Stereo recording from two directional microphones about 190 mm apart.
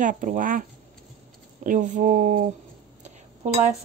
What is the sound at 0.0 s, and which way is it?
Speech, 45° right (ahead or behind).